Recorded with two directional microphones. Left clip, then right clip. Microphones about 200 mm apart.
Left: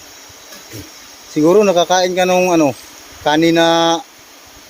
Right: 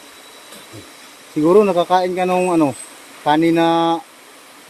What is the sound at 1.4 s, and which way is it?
Speech, 35° left (ahead or behind).